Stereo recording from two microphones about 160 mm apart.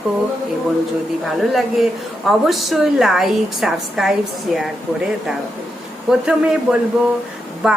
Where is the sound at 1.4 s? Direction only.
Centre (ahead or behind).